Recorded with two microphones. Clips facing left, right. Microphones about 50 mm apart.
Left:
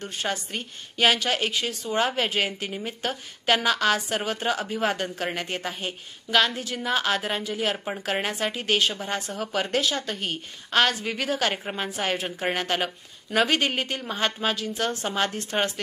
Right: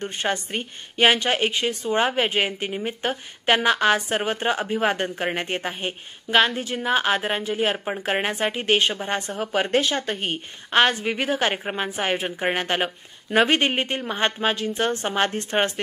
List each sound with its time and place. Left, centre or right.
0.0 s a woman's voice: right